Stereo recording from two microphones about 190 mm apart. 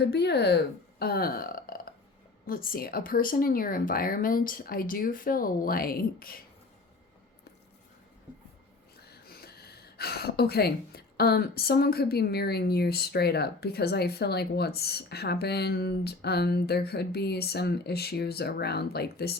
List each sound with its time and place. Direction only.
0.0 s speech: 60° left (ahead or behind)
9.0 s speech: 55° left (ahead or behind)